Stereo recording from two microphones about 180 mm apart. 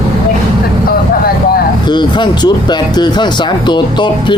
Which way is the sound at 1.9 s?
25° left (ahead or behind).